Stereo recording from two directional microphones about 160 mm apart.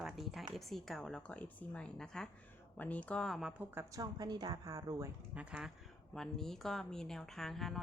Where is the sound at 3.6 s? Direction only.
15° right (ahead or behind).